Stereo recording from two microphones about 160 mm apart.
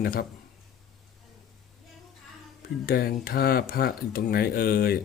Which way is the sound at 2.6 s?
70° left (ahead or behind).